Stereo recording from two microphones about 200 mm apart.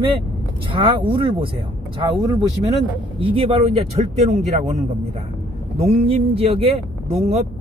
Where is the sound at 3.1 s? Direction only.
25° right (ahead or behind).